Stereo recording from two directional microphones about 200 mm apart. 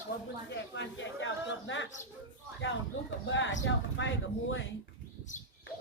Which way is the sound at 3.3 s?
70° left (ahead or behind).